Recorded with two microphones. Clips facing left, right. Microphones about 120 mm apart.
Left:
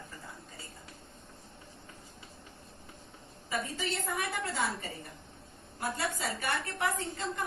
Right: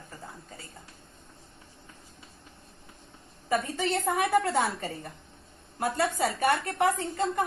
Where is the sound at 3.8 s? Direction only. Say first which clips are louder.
Right 8 dB; 60° right (ahead or behind).